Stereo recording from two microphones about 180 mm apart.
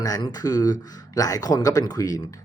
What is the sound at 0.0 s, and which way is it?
Speech, 20° left (ahead or behind).